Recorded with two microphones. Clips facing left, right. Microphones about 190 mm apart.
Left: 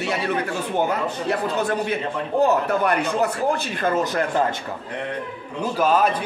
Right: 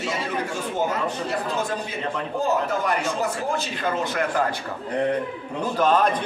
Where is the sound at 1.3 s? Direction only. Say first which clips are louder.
Left 4 dB; 60° left (ahead or behind).